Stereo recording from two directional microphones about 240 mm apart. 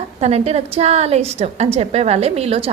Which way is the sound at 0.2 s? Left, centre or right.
Right.